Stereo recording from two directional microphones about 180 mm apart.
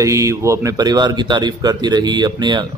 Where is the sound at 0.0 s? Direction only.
15° right (ahead or behind).